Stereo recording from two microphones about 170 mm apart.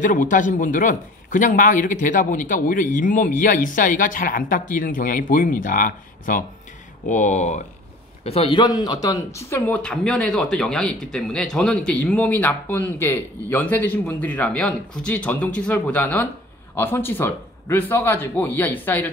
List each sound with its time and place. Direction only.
0.0 s a man's voice: 50° left (ahead or behind); by 19.0 s 10° left (ahead or behind)